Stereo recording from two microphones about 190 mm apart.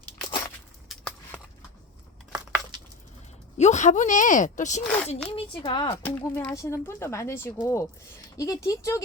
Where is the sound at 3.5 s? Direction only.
35° left (ahead or behind).